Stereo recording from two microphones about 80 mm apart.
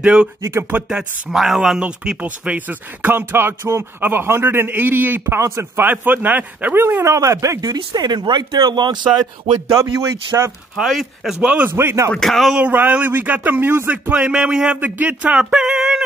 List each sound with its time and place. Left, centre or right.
0.0 s music: centre
0.4 s speech: right
0.8 s speech: centre; by 7.1 s right
7.1 s speech: right
9.8 s speech: right
10.8 s music: centre
11.7 s speech: right
12.1 s speech: centre
12.5 s speech: centre
14.1 s music: centre